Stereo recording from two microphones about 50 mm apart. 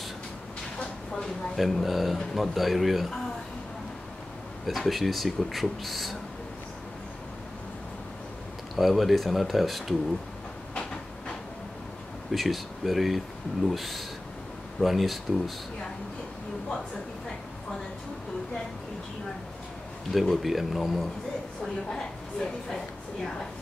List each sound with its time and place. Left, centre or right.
0.7 s a sound: centre
1.6 s speech: centre
4.6 s speech: centre
8.7 s speech: centre
10.7 s train: centre
12.3 s speech: centre
20.1 s speech: centre
21.8 s speech: centre